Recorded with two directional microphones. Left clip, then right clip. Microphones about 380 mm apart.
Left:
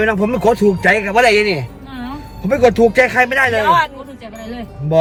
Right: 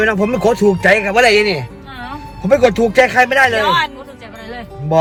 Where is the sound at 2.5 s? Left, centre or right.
Right.